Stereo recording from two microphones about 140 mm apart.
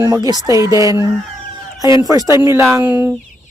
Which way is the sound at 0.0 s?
25° right (ahead or behind).